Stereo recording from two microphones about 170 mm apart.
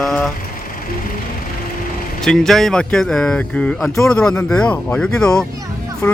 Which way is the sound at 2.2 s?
5° left (ahead or behind).